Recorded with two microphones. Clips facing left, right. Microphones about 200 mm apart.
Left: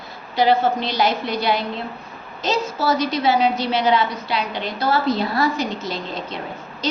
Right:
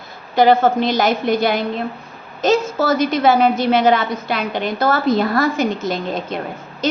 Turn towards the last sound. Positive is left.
turn(degrees=-50)  # may be behind; listen again after turning